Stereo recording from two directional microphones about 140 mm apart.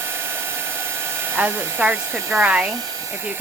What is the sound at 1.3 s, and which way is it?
Speech, 15° right (ahead or behind).